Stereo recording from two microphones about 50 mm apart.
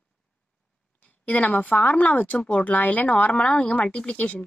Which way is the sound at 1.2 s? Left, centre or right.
Left.